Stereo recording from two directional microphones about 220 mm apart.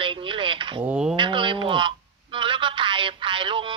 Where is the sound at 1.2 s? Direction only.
20° right (ahead or behind).